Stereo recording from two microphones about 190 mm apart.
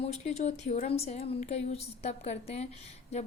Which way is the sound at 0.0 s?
35° left (ahead or behind).